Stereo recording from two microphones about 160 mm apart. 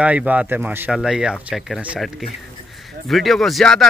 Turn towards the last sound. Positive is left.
turn(degrees=0)  # may be behind; listen again after turning